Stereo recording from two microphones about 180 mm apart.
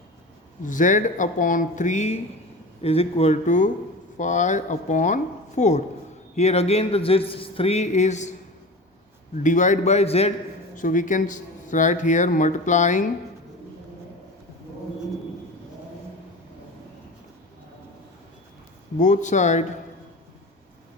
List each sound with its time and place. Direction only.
0.6 s speech: 45° left (ahead or behind)
9.4 s speech: 45° left (ahead or behind)
10.8 s speech: 45° left (ahead or behind)
18.9 s speech: 45° left (ahead or behind)